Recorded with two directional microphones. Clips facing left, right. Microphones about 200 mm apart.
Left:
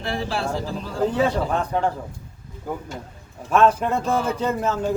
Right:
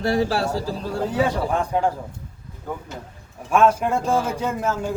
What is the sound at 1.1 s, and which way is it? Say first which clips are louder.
Speech: right 2 dB; 10° right (ahead or behind).